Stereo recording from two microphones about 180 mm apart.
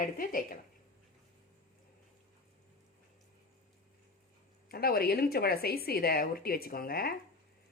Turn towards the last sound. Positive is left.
turn(degrees=55)  # may be behind; listen again after turning